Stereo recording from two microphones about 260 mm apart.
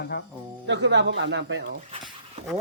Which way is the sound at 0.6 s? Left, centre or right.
Right.